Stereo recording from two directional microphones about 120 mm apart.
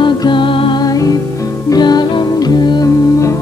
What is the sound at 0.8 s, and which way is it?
Music, 30° left (ahead or behind).